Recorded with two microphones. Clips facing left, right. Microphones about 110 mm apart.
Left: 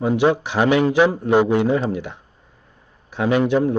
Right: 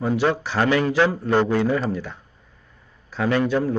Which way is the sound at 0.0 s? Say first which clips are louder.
Left 4 dB; 15° left (ahead or behind).